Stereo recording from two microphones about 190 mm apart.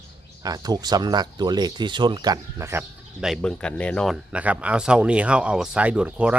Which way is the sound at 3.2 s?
Centre (ahead or behind).